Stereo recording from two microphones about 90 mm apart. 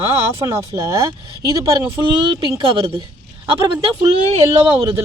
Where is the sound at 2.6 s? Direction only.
80° right.